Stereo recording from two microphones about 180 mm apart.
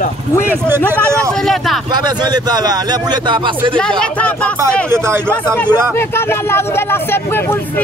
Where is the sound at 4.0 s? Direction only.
5° left (ahead or behind).